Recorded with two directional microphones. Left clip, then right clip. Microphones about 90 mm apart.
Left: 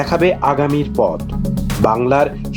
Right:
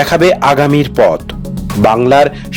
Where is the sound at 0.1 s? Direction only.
55° right (ahead or behind).